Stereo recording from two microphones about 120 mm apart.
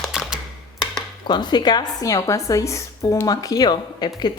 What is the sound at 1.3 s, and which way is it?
A woman's voice, 35° left (ahead or behind).